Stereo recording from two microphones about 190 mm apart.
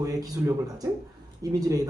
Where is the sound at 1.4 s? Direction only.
20° right (ahead or behind).